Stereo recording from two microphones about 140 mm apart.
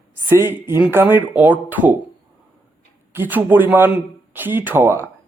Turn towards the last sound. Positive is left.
turn(degrees=-15)  # may be behind; listen again after turning